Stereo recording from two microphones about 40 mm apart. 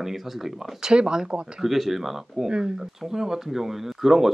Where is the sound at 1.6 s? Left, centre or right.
Centre.